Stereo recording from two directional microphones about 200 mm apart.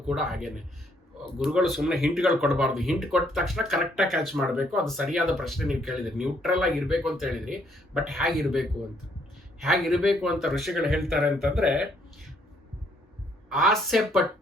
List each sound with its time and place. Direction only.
0.1 s speech: centre (ahead or behind)
13.5 s speech: centre (ahead or behind)